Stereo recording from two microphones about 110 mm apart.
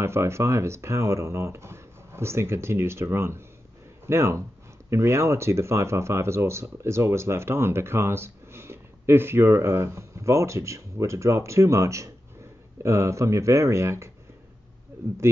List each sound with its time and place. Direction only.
0.0 s speech: 25° right (ahead or behind)